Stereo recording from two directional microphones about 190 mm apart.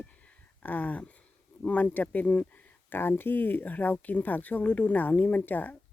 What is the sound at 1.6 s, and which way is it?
Speech, 10° left (ahead or behind).